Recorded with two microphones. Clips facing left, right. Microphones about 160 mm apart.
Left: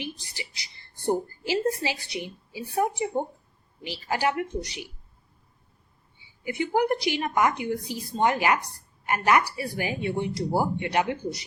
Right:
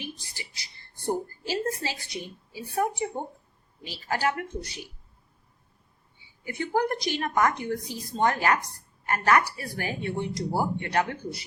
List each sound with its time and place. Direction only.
0.0 s speech: 15° left (ahead or behind)
6.4 s speech: 15° left (ahead or behind)